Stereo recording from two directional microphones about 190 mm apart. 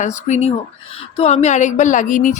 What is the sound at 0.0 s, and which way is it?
Speech, 40° left (ahead or behind).